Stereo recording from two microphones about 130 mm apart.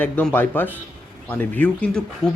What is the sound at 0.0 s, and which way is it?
Speech, 10° left (ahead or behind).